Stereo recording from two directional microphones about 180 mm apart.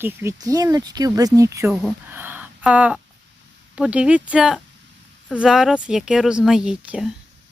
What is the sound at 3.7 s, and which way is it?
Speech, 5° right (ahead or behind).